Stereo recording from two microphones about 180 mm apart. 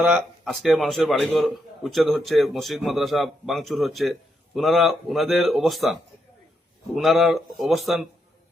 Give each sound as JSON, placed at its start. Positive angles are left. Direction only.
{"t": 0.0, "sound": "a man's voice", "side_deg": 0}